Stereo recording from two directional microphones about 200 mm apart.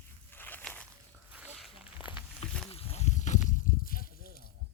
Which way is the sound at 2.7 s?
30° left (ahead or behind).